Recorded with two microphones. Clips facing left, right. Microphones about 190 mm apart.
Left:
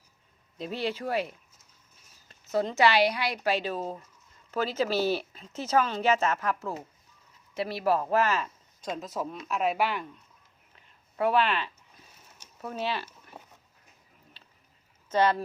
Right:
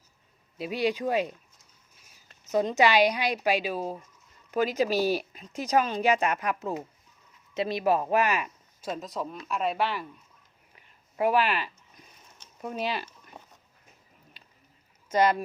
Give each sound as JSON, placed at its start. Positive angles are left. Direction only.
{"t": 0.6, "sound": "speech", "side_deg": -15}
{"t": 2.5, "sound": "speech", "side_deg": -15}
{"t": 10.8, "sound": "a sound", "side_deg": -10}
{"t": 12.6, "sound": "speech", "side_deg": -15}
{"t": 15.1, "sound": "speech", "side_deg": -10}